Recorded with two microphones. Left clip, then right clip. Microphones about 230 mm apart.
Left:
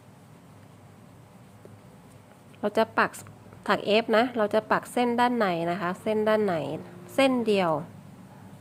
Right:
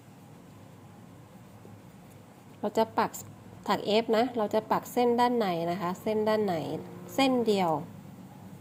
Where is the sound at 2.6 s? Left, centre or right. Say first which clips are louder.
Left 3 dB; centre.